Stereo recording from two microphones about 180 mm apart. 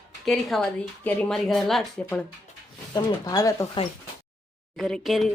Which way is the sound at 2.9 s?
20° left (ahead or behind).